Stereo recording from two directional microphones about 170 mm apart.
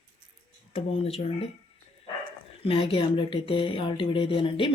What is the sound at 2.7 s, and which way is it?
Speech, 30° left (ahead or behind).